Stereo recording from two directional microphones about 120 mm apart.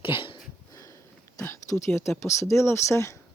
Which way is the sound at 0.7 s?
30° left (ahead or behind).